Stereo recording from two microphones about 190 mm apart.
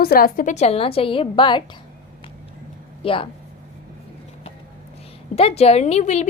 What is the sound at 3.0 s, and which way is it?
Speech, 30° left (ahead or behind).